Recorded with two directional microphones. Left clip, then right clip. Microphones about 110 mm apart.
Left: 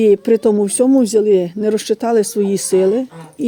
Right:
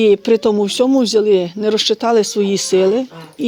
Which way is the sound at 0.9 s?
60° left (ahead or behind).